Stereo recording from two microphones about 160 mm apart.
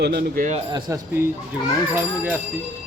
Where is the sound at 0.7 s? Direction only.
25° right (ahead or behind).